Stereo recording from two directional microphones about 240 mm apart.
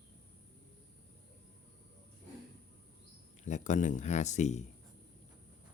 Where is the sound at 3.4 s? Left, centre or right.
Left.